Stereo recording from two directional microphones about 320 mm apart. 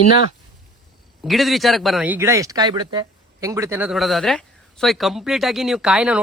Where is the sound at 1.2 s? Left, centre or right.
Centre.